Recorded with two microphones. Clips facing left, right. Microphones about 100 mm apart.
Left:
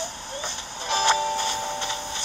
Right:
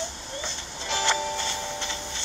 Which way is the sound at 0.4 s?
15° left (ahead or behind).